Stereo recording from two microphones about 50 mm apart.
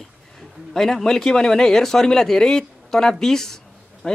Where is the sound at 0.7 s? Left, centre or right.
Centre.